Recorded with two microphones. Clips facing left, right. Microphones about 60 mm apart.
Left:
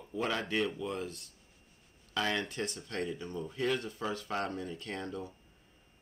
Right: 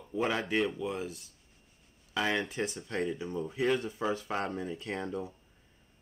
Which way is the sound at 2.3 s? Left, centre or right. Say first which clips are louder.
Right 3 dB; centre.